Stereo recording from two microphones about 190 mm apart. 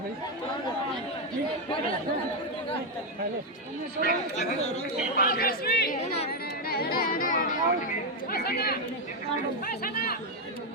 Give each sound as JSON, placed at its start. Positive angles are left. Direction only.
{"t": 4.0, "sound": "speech", "side_deg": 35}
{"t": 5.1, "sound": "speech", "side_deg": 50}
{"t": 6.0, "sound": "speech", "side_deg": 35}
{"t": 6.7, "sound": "speech", "side_deg": 55}
{"t": 9.8, "sound": "speech", "side_deg": 55}